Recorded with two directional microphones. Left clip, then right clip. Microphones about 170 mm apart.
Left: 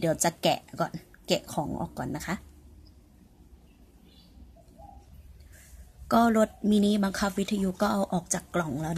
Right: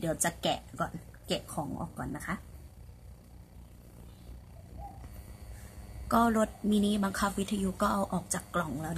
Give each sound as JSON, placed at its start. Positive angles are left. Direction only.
{"t": 0.0, "sound": "speech", "side_deg": 25}
{"t": 6.0, "sound": "speech", "side_deg": 20}